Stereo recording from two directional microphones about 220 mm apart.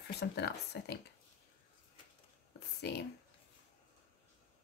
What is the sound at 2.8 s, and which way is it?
Speech, 50° left (ahead or behind).